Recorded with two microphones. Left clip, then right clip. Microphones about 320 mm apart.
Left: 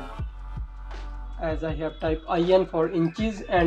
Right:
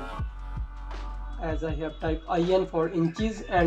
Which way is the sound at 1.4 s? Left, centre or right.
Centre.